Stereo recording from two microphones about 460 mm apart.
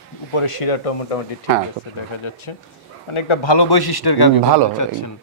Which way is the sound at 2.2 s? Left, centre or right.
Left.